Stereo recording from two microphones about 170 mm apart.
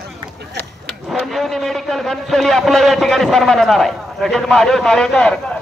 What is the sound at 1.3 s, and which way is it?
A man's voice, centre (ahead or behind).